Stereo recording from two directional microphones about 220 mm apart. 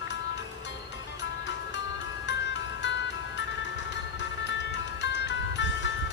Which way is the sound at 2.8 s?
55° left (ahead or behind).